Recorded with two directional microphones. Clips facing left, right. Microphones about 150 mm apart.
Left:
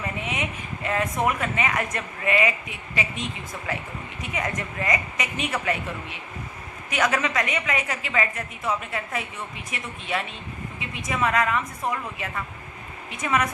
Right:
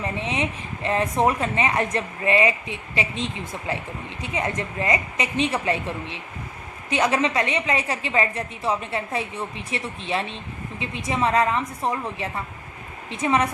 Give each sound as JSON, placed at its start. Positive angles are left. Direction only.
{"t": 0.0, "sound": "a woman's voice", "side_deg": -30}